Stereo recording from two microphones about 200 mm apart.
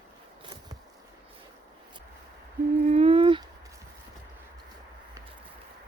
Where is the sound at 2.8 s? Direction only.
35° right (ahead or behind).